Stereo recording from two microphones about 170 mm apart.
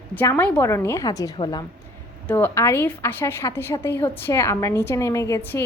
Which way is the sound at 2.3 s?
15° left (ahead or behind).